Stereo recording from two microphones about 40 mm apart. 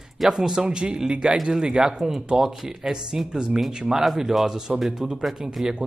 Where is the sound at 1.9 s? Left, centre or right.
Centre.